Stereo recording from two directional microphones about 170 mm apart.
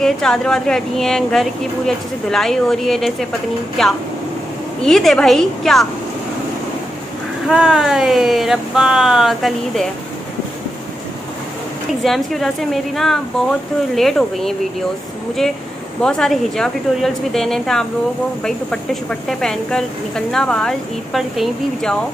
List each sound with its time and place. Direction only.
0.0 s a woman's voice: 5° left (ahead or behind)
7.4 s a woman's voice: 5° right (ahead or behind)
12.0 s a woman's voice: centre (ahead or behind)
16.0 s a woman's voice: 5° left (ahead or behind)